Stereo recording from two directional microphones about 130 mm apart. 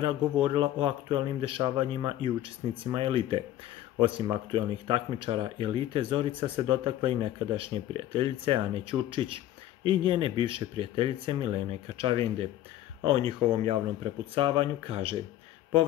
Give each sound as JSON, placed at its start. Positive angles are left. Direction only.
{"t": 0.0, "sound": "a man's voice", "side_deg": -40}